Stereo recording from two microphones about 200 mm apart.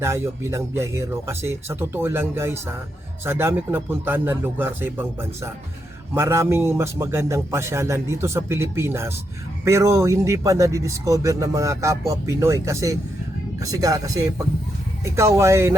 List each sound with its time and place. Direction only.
0.0 s speech: 15° right (ahead or behind)